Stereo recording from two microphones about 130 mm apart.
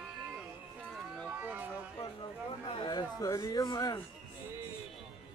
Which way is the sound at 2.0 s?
40° left (ahead or behind).